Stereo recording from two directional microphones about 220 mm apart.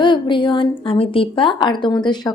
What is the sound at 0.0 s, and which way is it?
A woman's voice, 20° left (ahead or behind).